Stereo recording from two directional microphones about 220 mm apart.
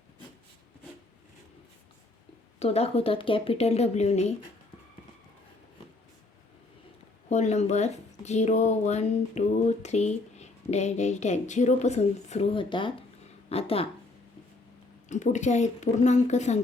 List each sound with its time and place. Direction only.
2.6 s speech: 30° left (ahead or behind)
7.3 s speech: 30° left (ahead or behind)
15.1 s speech: 35° left (ahead or behind)